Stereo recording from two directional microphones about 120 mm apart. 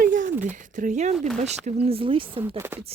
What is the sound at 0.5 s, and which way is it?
Speech, 90° right.